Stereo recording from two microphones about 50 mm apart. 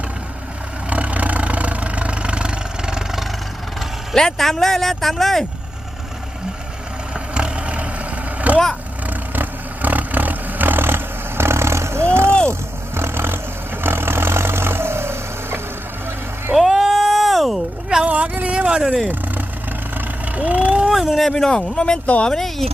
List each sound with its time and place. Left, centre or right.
0.9 s vehicle: right; by 3.2 s centre
4.1 s speech: centre
7.3 s vehicle: right
16.6 s a sound: centre
18.0 s a sound: right
20.3 s vehicle: right
20.9 s speech: centre
22.0 s speech: left
22.3 s speech: centre